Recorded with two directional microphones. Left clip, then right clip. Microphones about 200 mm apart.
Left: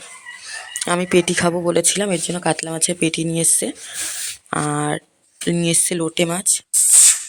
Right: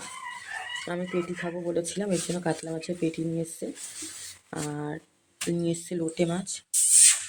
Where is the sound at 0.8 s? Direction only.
30° left (ahead or behind).